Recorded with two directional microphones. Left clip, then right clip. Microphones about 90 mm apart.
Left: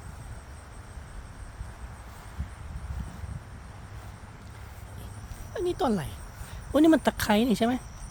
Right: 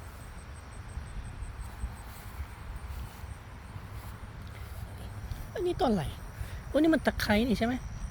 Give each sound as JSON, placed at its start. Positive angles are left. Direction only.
{"t": 5.5, "sound": "speech", "side_deg": 50}
{"t": 6.7, "sound": "speech", "side_deg": 65}